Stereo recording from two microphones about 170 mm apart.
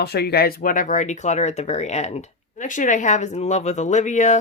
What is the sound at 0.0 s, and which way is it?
Speech, 70° left (ahead or behind).